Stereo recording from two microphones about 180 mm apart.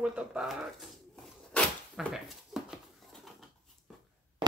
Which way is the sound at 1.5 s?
Centre (ahead or behind).